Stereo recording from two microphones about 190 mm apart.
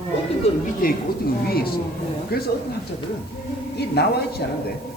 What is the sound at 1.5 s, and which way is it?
Speech, 55° left (ahead or behind).